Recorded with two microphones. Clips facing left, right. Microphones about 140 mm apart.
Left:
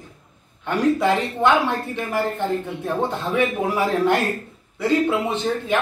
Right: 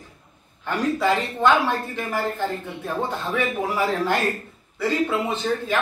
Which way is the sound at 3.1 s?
25° left (ahead or behind).